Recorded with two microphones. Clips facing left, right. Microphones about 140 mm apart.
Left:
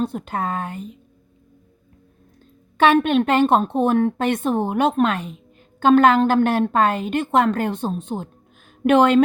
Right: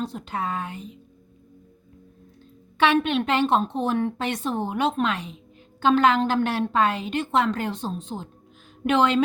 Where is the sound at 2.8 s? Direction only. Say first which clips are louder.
Left 5 dB; 45° left (ahead or behind).